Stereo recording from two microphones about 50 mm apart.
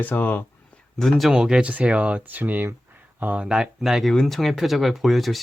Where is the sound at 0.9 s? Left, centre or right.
Centre.